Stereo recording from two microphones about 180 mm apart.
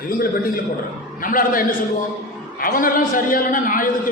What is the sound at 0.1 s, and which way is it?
A man's voice, 50° left (ahead or behind).